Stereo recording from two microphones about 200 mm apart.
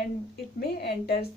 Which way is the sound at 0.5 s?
50° left (ahead or behind).